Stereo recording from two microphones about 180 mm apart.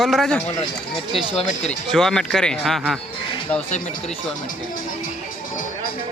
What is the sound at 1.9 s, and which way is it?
Speech, 5° left (ahead or behind).